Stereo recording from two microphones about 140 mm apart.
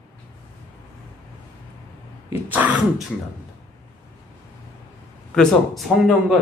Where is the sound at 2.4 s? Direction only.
10° right (ahead or behind).